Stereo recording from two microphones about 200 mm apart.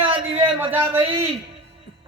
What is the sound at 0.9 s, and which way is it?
Speech, 25° right (ahead or behind).